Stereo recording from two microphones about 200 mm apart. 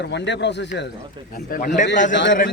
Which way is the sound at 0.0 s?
60° left (ahead or behind).